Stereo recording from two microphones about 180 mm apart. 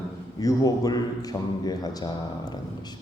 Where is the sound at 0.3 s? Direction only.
20° left (ahead or behind).